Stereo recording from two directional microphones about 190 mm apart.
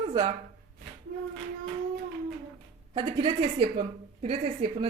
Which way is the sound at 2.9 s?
30° right (ahead or behind).